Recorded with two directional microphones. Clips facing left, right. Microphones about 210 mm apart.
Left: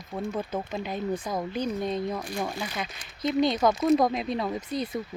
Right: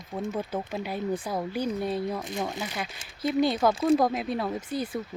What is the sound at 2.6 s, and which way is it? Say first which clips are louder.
Speech: even; 5° right (ahead or behind).